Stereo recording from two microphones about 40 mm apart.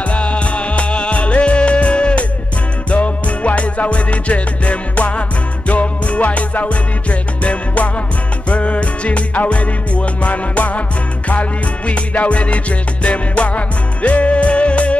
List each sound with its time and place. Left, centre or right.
0.1 s music: left
11.9 s music: left